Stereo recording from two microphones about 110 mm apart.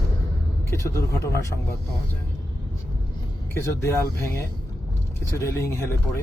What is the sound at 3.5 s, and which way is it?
Speech, 25° left (ahead or behind).